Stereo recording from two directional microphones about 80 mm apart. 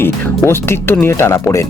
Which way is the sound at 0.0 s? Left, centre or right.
Left.